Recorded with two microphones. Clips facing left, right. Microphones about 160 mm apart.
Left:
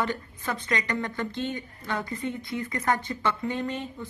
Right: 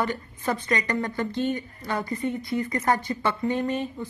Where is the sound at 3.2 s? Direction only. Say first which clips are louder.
Right 3 dB; 15° right (ahead or behind).